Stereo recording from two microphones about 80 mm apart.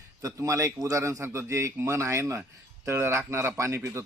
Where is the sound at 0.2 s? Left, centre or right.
Right.